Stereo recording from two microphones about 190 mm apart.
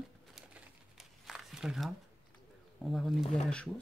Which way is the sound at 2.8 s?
Centre (ahead or behind).